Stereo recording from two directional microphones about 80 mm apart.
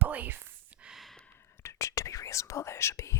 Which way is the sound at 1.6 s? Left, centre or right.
Left.